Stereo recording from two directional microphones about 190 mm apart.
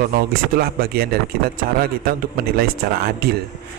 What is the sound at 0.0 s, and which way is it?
Speech, 50° right (ahead or behind).